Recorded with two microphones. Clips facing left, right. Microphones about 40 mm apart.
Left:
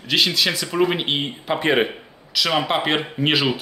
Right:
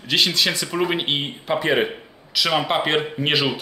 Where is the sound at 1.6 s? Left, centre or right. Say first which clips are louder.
Left 2 dB; left.